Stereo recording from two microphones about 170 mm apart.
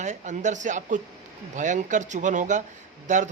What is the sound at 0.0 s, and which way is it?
Speech, 45° right (ahead or behind).